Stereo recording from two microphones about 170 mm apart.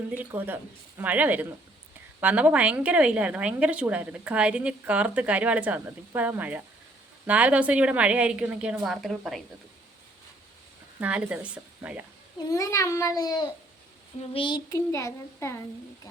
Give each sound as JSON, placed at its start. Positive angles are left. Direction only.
{"t": 0.2, "sound": "a woman's voice", "side_deg": -10}
{"t": 11.0, "sound": "a woman's voice", "side_deg": -10}
{"t": 12.5, "sound": "a child's voice", "side_deg": 20}
{"t": 14.8, "sound": "a child's voice", "side_deg": 15}